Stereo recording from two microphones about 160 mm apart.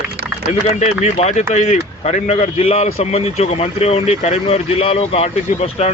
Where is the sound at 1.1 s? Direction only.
45° left (ahead or behind).